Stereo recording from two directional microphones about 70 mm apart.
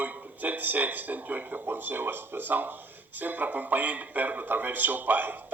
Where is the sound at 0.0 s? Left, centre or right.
Right.